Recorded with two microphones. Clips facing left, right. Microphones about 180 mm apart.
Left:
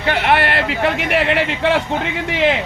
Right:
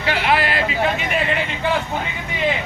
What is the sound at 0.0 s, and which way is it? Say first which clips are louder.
Speech: left 3 dB; 55° left (ahead or behind).